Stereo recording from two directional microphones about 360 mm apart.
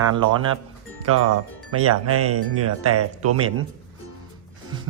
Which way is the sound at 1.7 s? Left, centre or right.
Right.